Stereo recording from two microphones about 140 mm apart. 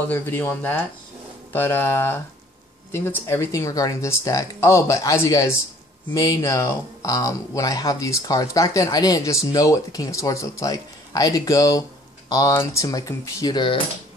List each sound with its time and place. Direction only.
0.1 s speech: 15° left (ahead or behind); by 13.7 s 30° left (ahead or behind)